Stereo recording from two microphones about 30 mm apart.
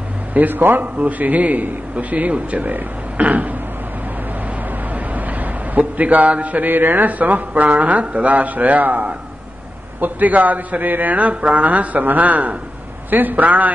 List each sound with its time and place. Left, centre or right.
0.3 s speech: right
5.8 s speech: right
9.9 s speech: right
13.1 s a man's voice: right